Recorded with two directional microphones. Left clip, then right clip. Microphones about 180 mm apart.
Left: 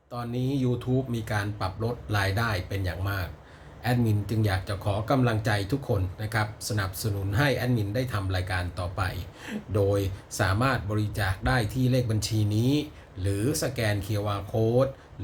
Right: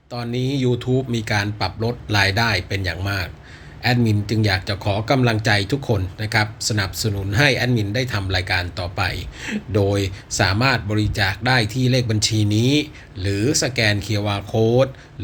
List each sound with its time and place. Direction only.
0.1 s speech: centre (ahead or behind)